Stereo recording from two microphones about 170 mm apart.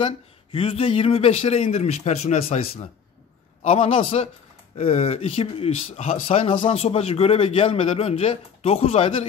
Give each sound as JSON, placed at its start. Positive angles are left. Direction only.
{"t": 0.0, "sound": "speech", "side_deg": 30}